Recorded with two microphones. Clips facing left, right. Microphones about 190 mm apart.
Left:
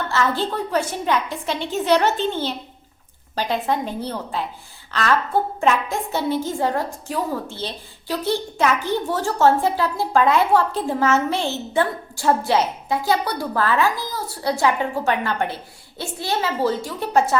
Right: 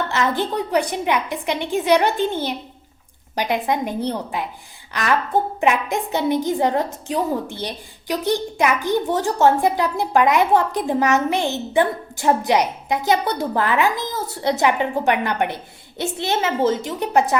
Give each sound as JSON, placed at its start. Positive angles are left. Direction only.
{"t": 0.1, "sound": "a woman's voice", "side_deg": -15}